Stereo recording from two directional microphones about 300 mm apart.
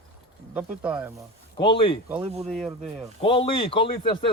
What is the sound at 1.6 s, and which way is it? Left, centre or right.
Speech, centre.